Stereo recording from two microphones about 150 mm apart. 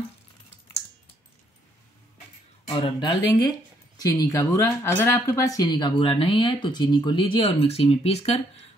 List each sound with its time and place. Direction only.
2.7 s speech: 30° left (ahead or behind)